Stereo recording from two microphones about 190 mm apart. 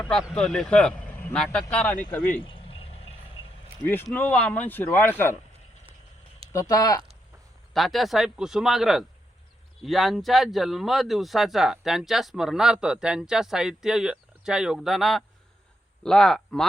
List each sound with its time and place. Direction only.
0.0 s speech: 5° left (ahead or behind)
2.4 s a sound: 30° left (ahead or behind)
3.8 s speech: 10° left (ahead or behind)
6.5 s speech: 15° left (ahead or behind)
7.7 s speech: centre (ahead or behind)